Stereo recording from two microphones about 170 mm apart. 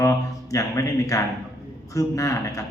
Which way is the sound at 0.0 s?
20° left (ahead or behind).